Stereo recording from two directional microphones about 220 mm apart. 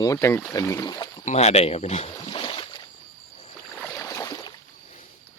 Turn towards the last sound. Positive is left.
turn(degrees=15)  # may be behind; listen again after turning